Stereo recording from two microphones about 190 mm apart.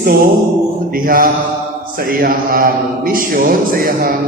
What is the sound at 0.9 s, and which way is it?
Mantra, 50° right (ahead or behind).